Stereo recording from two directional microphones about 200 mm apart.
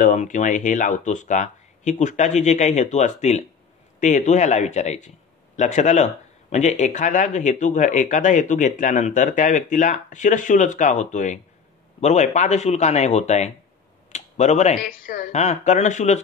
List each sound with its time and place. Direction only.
0.0 s speech: 40° left (ahead or behind)